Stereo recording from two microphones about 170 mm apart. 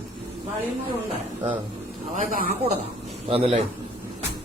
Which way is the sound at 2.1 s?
50° right (ahead or behind).